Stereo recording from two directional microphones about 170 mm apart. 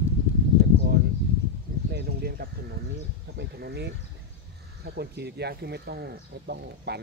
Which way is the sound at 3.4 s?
75° right (ahead or behind).